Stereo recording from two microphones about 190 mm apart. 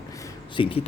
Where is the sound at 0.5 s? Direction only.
30° left (ahead or behind).